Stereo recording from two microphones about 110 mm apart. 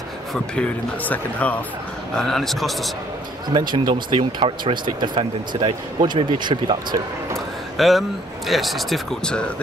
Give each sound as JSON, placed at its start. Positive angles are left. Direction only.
{"t": 1.0, "sound": "speech", "side_deg": 15}
{"t": 2.1, "sound": "speech", "side_deg": 5}
{"t": 3.4, "sound": "speech", "side_deg": -45}
{"t": 7.3, "sound": "a sound", "side_deg": 0}
{"t": 8.5, "sound": "speech", "side_deg": 0}